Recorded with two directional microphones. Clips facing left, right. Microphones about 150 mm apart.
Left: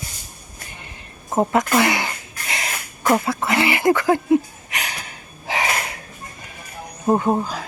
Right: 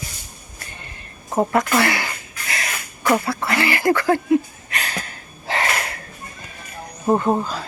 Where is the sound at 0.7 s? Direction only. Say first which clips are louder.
Even; 15° left (ahead or behind).